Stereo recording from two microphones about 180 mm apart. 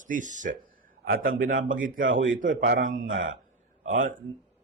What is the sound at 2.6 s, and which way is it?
Speech, 75° right (ahead or behind).